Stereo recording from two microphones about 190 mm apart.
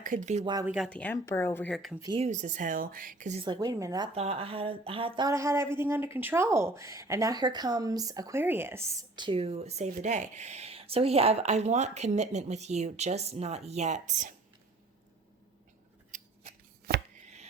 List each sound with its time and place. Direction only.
0.0 s speech: 45° right (ahead or behind)
0.6 s speech: 5° right (ahead or behind)
0.9 s speech: 5° left (ahead or behind)
2.0 s a woman's voice: 20° right (ahead or behind)
2.2 s a woman's voice: 40° right (ahead or behind)
3.4 s a woman's voice: 20° right (ahead or behind)
4.1 s speech: 30° right (ahead or behind)
16.9 s chopping: 55° right (ahead or behind)